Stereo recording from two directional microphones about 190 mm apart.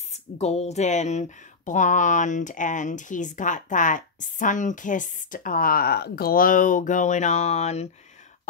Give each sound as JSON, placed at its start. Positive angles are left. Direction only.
{"t": 0.1, "sound": "speech", "side_deg": 35}